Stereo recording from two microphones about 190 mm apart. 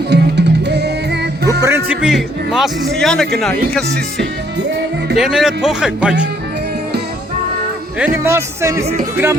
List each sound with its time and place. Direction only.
0.1 s music: 60° right (ahead or behind)
1.6 s a man's voice: 10° right (ahead or behind)
5.1 s a man's voice: centre (ahead or behind)
7.9 s speech: 10° right (ahead or behind)